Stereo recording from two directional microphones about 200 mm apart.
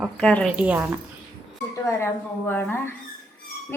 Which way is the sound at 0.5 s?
5° right (ahead or behind).